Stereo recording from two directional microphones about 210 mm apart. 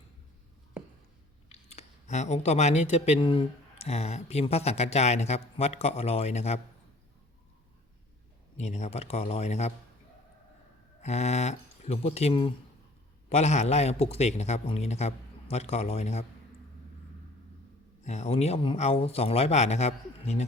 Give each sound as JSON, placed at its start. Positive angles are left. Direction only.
{"t": 1.5, "sound": "speech", "side_deg": 30}
{"t": 8.5, "sound": "speech", "side_deg": 35}
{"t": 11.0, "sound": "speech", "side_deg": 30}
{"t": 18.0, "sound": "speech", "side_deg": 35}